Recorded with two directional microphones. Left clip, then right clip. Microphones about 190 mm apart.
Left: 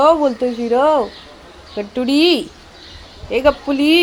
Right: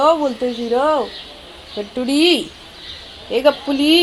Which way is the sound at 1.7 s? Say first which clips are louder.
Left 2 dB; 15° left (ahead or behind).